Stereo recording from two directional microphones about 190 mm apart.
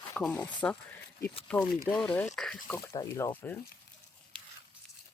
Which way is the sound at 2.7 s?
15° left (ahead or behind).